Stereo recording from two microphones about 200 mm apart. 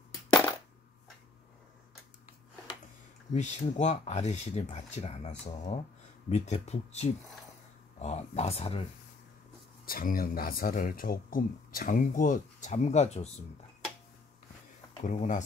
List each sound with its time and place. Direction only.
3.3 s speech: 35° left (ahead or behind)
9.8 s speech: 45° left (ahead or behind)
15.0 s speech: 35° left (ahead or behind)